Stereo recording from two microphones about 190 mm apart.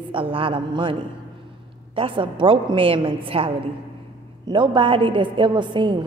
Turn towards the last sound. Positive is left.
turn(degrees=-25)  # may be behind; listen again after turning